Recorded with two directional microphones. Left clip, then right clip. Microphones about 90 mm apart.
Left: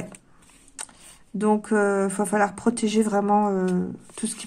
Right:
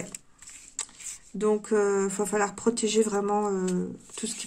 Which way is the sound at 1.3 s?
40° left (ahead or behind).